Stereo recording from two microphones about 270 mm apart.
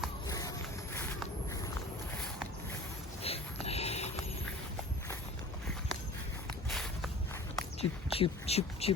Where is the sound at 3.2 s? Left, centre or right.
Left.